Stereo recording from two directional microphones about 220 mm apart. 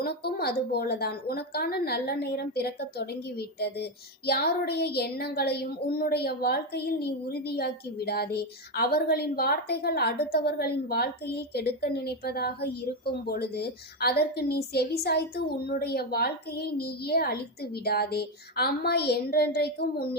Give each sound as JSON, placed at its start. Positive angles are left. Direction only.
{"t": 0.0, "sound": "speech", "side_deg": 45}